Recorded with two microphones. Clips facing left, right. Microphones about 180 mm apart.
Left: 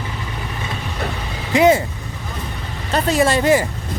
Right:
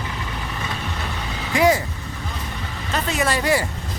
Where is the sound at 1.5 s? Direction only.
20° left (ahead or behind).